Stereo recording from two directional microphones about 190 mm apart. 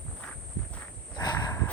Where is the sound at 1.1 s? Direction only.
20° left (ahead or behind).